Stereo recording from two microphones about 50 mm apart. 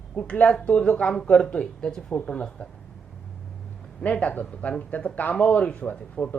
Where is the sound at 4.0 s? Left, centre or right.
Left.